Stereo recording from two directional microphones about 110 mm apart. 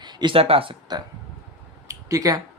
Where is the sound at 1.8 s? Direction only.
30° right (ahead or behind).